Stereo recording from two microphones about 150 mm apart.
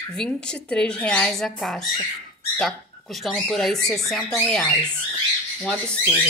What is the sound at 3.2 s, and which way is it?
Speech, 5° left (ahead or behind).